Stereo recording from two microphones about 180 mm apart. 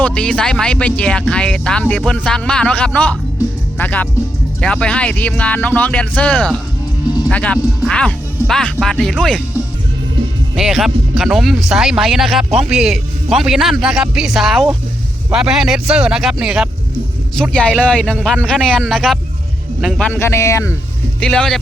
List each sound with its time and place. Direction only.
0.0 s speech: 5° left (ahead or behind)
10.5 s speech: centre (ahead or behind)
20.1 s speech: 15° left (ahead or behind)
21.2 s speech: 5° left (ahead or behind)